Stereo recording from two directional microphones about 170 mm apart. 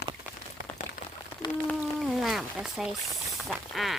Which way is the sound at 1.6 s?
Centre (ahead or behind).